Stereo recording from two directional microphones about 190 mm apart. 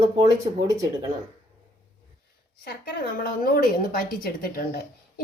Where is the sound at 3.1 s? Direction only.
50° left (ahead or behind).